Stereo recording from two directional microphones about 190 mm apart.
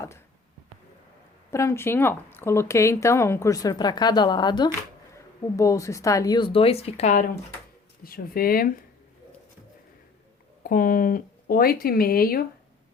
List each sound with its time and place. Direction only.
1.5 s a woman's voice: 15° left (ahead or behind); by 7.3 s 40° left (ahead or behind)
8.0 s speech: 50° left (ahead or behind)
10.6 s speech: 45° left (ahead or behind)